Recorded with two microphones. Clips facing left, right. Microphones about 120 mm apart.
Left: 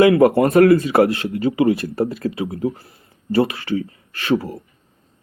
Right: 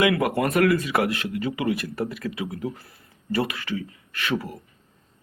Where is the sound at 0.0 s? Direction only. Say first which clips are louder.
Left 9 dB; 35° left (ahead or behind).